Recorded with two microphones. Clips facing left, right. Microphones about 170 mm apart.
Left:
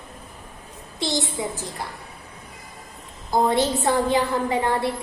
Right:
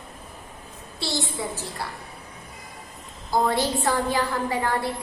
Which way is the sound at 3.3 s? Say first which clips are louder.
Left 3 dB; 20° left (ahead or behind).